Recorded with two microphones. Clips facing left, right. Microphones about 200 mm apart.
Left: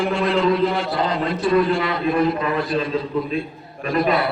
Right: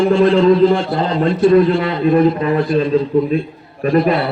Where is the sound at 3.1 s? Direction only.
50° right (ahead or behind).